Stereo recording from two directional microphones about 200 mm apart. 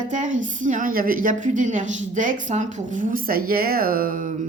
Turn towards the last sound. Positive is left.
turn(degrees=-40)  # may be behind; listen again after turning